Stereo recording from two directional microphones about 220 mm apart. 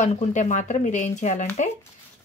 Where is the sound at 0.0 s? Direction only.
35° left (ahead or behind).